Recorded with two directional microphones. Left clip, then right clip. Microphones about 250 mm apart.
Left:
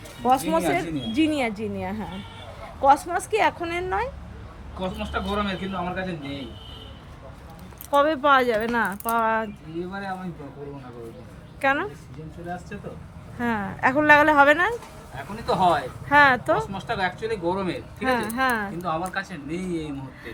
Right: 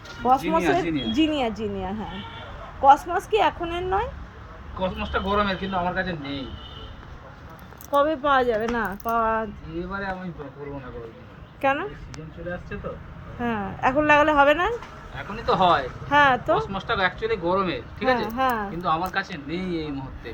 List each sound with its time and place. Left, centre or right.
0.2 s a woman's voice: centre
7.9 s a woman's voice: centre
11.6 s a woman's voice: centre
13.4 s a woman's voice: centre